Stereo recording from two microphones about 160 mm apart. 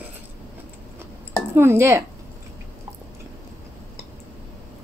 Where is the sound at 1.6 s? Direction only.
15° right (ahead or behind).